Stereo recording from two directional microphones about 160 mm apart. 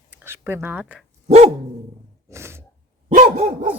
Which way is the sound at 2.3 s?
15° right (ahead or behind).